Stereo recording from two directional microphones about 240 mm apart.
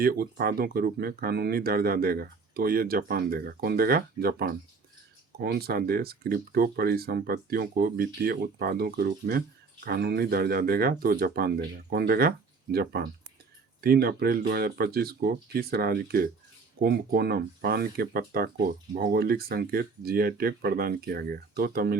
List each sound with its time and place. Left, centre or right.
0.0 s speech: right